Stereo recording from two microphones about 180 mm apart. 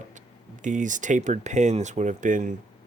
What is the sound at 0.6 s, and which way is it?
Speech, 45° right (ahead or behind).